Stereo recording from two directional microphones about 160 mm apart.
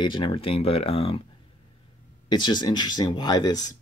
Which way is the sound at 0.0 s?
30° left (ahead or behind).